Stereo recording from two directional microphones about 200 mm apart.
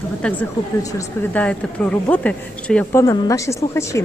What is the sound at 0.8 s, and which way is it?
Speech, 15° left (ahead or behind).